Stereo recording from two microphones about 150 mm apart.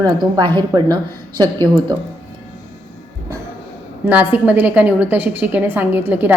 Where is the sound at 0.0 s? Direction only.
30° right (ahead or behind).